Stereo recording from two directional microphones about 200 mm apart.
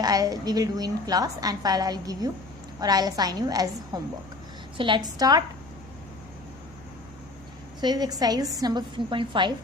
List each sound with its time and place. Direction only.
0.0 s a woman's voice: 20° right (ahead or behind)
7.8 s a woman's voice: 20° right (ahead or behind)